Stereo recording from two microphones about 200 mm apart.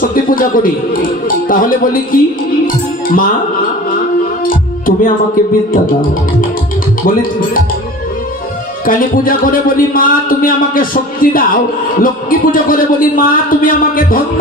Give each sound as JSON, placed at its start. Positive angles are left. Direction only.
{"t": 0.0, "sound": "a man's voice", "side_deg": 45}
{"t": 4.5, "sound": "music", "side_deg": 45}
{"t": 8.8, "sound": "a man's voice", "side_deg": 45}